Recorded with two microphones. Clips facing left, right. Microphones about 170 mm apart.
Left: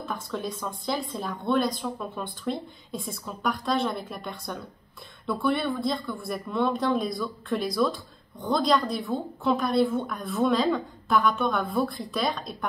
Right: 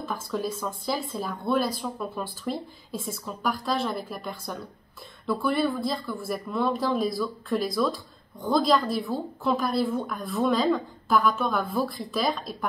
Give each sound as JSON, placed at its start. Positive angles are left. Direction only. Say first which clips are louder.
{"t": 0.0, "sound": "speech", "louder": "right 2 dB", "side_deg": 0}